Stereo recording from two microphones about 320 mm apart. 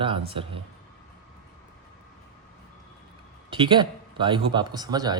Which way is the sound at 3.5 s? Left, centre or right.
Centre.